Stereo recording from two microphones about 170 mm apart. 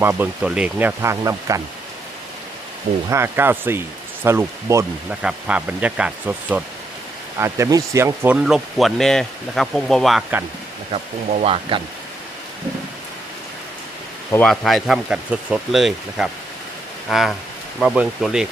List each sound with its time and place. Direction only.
0.0 s speech: 15° right (ahead or behind)
3.1 s speech: 15° right (ahead or behind)
11.4 s speech: 35° right (ahead or behind)
14.3 s speech: 5° left (ahead or behind)